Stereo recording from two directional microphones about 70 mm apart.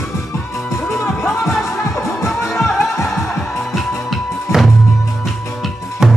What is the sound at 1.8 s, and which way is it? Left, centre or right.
Music, left.